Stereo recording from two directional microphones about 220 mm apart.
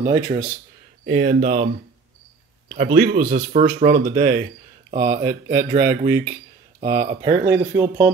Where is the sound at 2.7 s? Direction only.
45° right (ahead or behind).